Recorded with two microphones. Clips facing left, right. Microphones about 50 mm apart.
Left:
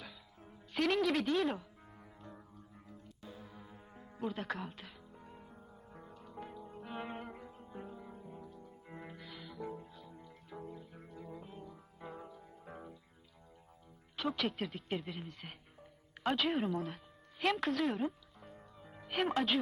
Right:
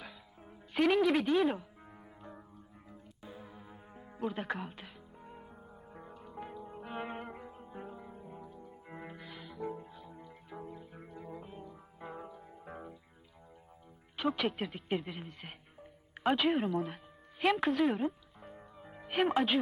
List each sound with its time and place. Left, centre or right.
0.0 s music: centre
14.2 s speech: centre
14.9 s music: centre
16.5 s speech: centre
17.4 s music: centre